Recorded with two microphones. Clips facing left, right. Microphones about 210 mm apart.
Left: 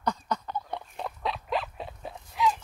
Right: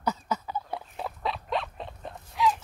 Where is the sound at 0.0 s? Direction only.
5° right (ahead or behind).